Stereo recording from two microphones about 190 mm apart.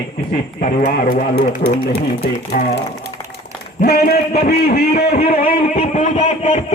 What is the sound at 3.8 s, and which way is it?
A man's voice, 55° left (ahead or behind).